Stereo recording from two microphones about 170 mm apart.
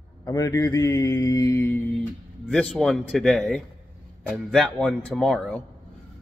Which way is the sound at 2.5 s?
5° left (ahead or behind).